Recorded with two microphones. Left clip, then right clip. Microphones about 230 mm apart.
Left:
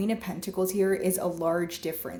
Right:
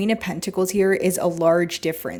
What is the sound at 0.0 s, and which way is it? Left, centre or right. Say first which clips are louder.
Speech: right 8 dB; right.